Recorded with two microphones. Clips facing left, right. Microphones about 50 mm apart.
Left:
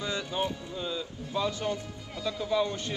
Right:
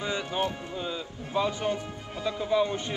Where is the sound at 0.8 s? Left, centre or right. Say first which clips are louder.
Right 1 dB; right.